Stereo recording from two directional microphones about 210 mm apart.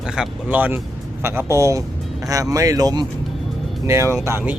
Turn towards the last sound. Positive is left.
turn(degrees=-10)  # may be behind; listen again after turning